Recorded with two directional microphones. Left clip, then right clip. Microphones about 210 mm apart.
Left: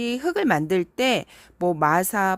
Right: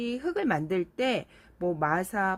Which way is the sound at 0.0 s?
40° left (ahead or behind).